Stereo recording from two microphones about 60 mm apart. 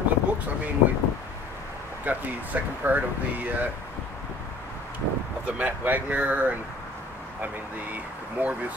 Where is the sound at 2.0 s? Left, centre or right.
Right.